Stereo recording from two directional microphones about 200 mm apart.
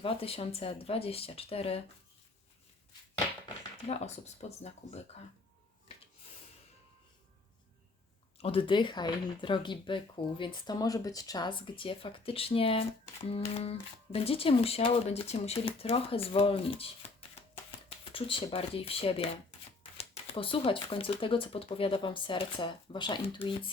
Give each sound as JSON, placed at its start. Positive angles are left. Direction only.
{"t": 0.0, "sound": "speech", "side_deg": 30}
{"t": 3.8, "sound": "speech", "side_deg": 30}
{"t": 8.4, "sound": "speech", "side_deg": 30}